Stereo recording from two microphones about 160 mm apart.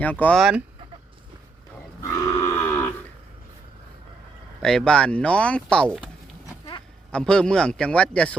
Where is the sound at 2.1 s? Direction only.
20° left (ahead or behind).